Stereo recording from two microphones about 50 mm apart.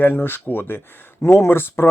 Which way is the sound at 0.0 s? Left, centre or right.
Left.